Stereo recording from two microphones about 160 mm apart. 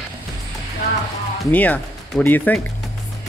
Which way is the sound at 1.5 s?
10° left (ahead or behind).